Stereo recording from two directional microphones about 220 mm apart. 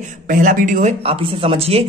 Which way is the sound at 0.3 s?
40° right (ahead or behind).